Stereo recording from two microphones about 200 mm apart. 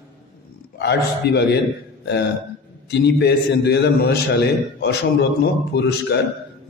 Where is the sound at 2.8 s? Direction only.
55° left (ahead or behind).